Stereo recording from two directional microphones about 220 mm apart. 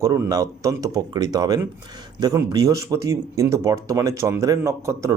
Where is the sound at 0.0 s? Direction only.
15° right (ahead or behind).